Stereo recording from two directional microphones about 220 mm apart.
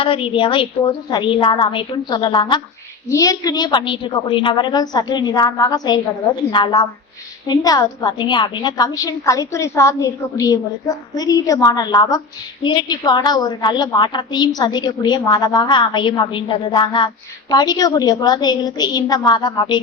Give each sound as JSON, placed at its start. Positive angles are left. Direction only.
{"t": 0.0, "sound": "a woman's voice", "side_deg": 25}